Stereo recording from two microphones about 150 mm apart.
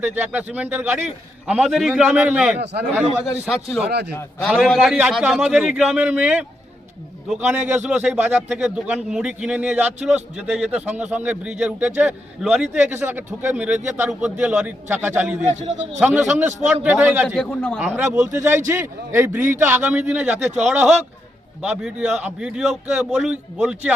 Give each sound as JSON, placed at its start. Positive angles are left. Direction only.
{"t": 0.3, "sound": "a man's voice", "side_deg": -10}
{"t": 4.1, "sound": "a man's voice", "side_deg": 15}
{"t": 4.7, "sound": "speech", "side_deg": 0}
{"t": 7.5, "sound": "a man's voice", "side_deg": -15}
{"t": 12.7, "sound": "speech", "side_deg": -15}
{"t": 15.4, "sound": "a man's voice", "side_deg": -50}
{"t": 16.0, "sound": "speech", "side_deg": -15}
{"t": 17.2, "sound": "a man's voice", "side_deg": 5}
{"t": 17.7, "sound": "a man's voice", "side_deg": -10}